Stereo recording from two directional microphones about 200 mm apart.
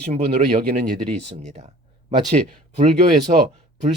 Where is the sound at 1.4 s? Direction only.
35° right (ahead or behind).